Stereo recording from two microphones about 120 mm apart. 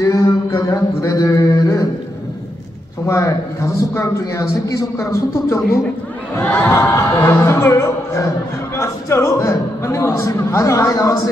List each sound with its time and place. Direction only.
0.0 s a sound: 25° left (ahead or behind)
3.1 s a man's voice: 25° left (ahead or behind)
6.3 s a man's voice: 15° left (ahead or behind)